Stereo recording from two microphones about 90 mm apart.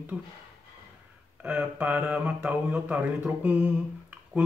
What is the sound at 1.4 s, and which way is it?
A man's voice, 15° right (ahead or behind).